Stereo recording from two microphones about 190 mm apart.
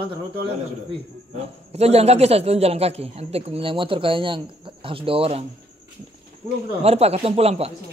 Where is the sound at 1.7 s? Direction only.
35° right (ahead or behind).